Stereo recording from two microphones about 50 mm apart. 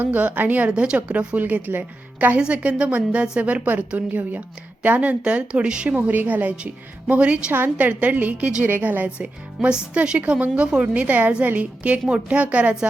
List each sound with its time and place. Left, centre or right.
0.0 s a woman's voice: right
0.7 s a woman's voice: right
2.4 s a woman's voice: right
6.0 s a woman's voice: right
7.5 s a woman's voice: right
9.2 s speech: right